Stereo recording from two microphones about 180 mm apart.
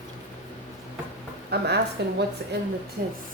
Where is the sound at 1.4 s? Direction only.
65° right (ahead or behind).